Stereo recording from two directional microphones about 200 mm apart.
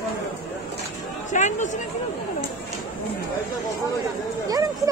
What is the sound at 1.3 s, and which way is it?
Speech, 35° left (ahead or behind).